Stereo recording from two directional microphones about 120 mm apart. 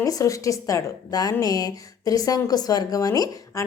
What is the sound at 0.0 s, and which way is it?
A woman's voice, 30° left (ahead or behind).